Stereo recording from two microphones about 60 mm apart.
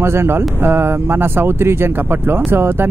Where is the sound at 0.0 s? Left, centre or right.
Right.